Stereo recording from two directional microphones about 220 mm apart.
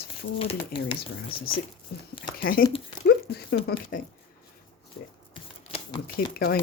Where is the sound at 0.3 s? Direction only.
25° left (ahead or behind).